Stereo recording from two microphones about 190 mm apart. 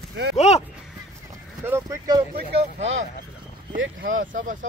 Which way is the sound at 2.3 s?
75° right (ahead or behind).